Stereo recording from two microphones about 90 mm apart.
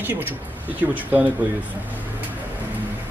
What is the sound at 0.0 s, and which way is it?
Speech, 20° right (ahead or behind).